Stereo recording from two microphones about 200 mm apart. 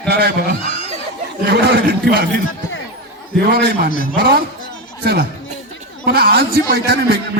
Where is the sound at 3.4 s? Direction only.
55° right (ahead or behind).